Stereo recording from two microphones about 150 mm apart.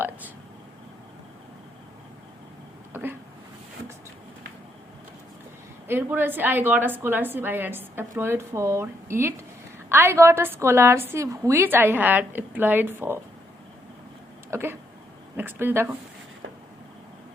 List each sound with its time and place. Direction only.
2.9 s speech: 15° right (ahead or behind)
5.9 s a woman's voice: 15° right (ahead or behind)
14.5 s a woman's voice: 15° right (ahead or behind)